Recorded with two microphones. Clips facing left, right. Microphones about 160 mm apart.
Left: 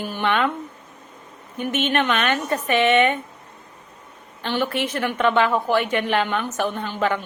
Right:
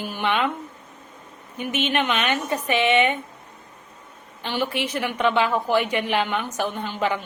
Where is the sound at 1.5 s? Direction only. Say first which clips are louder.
Left 2 dB; 50° left (ahead or behind).